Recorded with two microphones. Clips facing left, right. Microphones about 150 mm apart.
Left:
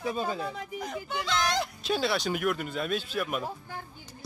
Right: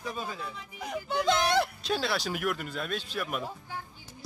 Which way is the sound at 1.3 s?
60° right (ahead or behind).